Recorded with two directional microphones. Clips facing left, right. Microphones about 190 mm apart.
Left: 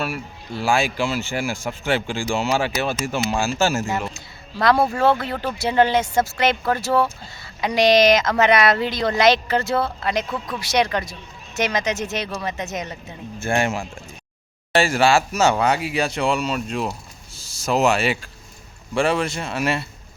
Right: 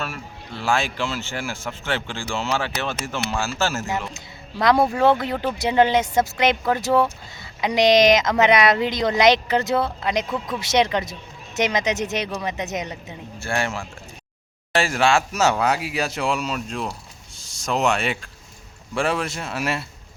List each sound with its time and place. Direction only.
0.0 s speech: 10° left (ahead or behind)
4.1 s speech: 20° right (ahead or behind)
13.4 s speech: 20° left (ahead or behind)
14.7 s speech: centre (ahead or behind)